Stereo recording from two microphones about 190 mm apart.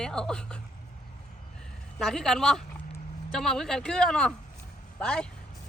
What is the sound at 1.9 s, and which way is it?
Speech, 5° left (ahead or behind).